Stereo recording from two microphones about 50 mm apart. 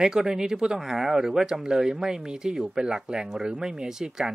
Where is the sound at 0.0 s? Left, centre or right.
Centre.